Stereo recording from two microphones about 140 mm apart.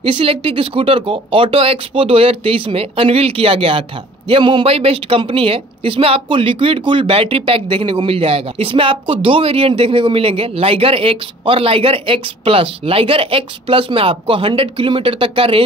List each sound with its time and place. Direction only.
0.0 s a woman's voice: 40° right (ahead or behind)